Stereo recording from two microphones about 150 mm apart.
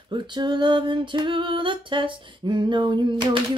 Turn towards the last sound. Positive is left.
turn(degrees=-30)  # may be behind; listen again after turning